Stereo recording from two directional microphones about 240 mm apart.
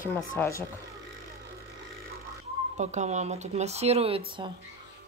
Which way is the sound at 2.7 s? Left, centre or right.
Right.